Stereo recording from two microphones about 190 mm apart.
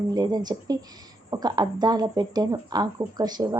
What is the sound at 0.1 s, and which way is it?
A woman's voice, 20° right (ahead or behind).